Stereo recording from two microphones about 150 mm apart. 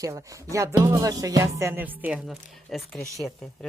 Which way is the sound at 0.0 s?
20° right (ahead or behind).